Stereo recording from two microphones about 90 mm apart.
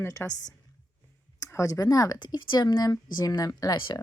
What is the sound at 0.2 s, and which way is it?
Speech, 20° left (ahead or behind).